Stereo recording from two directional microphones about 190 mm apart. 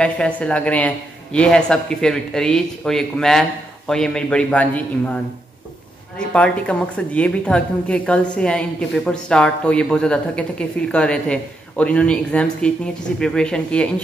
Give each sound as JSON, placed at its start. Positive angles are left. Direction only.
{"t": 0.0, "sound": "speech", "side_deg": 5}
{"t": 6.1, "sound": "speech", "side_deg": 5}